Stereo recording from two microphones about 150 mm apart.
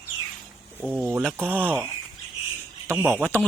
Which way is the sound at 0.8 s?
5° right (ahead or behind).